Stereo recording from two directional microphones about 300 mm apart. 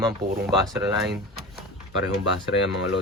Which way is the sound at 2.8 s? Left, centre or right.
Left.